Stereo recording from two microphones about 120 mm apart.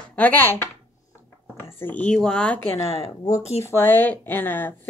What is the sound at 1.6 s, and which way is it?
Speech, 15° left (ahead or behind).